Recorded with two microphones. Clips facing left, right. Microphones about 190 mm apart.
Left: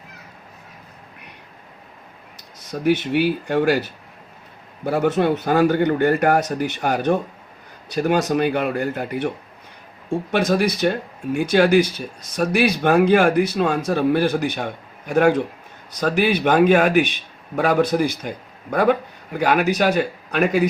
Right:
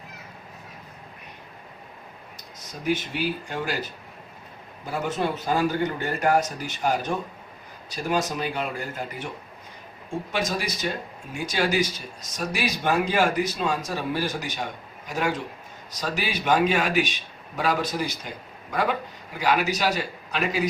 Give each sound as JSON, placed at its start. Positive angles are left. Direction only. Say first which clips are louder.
{"t": 2.8, "sound": "speech", "louder": "left 8 dB", "side_deg": 65}
{"t": 4.9, "sound": "speech", "louder": "left 9 dB", "side_deg": 60}
{"t": 10.3, "sound": "a man's voice", "louder": "left 10 dB", "side_deg": 55}